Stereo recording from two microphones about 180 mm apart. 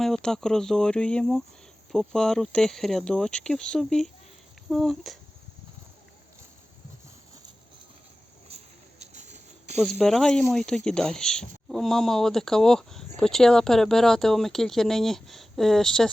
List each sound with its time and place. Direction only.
0.0 s speech: centre (ahead or behind)
9.1 s a sound: 40° right (ahead or behind)
9.8 s speech: 5° left (ahead or behind)